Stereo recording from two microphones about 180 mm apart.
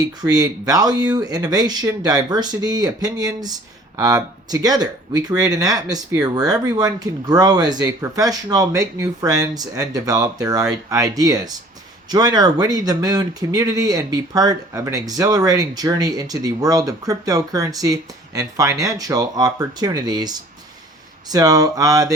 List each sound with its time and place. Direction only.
0.0 s speech: 20° right (ahead or behind)